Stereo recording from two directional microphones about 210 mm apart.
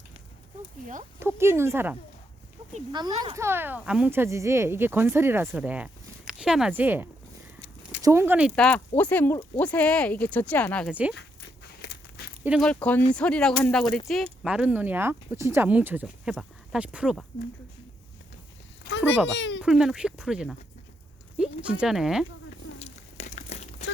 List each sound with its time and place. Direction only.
1.2 s speech: 10° right (ahead or behind); by 10.9 s 5° left (ahead or behind)
10.9 s speech: 5° right (ahead or behind)
11.8 s biting: 50° left (ahead or behind)
12.4 s speech: 5° right (ahead or behind)
18.8 s a sound: 60° left (ahead or behind)
19.1 s speech: centre (ahead or behind)
21.6 s speech: 5° right (ahead or behind)
22.8 s crumpling: 35° left (ahead or behind)